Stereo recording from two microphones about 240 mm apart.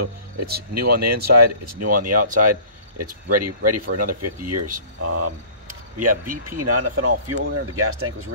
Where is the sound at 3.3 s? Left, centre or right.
Right.